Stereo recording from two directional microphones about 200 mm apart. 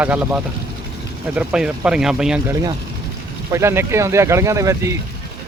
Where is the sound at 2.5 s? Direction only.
20° right (ahead or behind).